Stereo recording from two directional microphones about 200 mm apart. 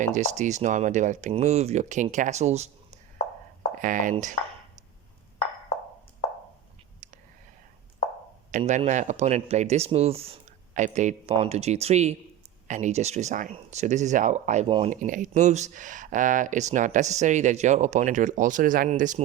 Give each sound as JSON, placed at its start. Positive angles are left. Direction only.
{"t": 0.0, "sound": "speech", "side_deg": -35}
{"t": 8.5, "sound": "speech", "side_deg": -35}